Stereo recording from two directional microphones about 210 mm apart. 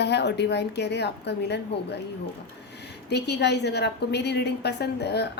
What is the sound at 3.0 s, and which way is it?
A woman's voice, 55° left (ahead or behind).